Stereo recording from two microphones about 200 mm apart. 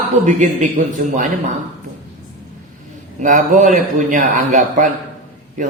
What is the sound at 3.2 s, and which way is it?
Speech, 40° right (ahead or behind).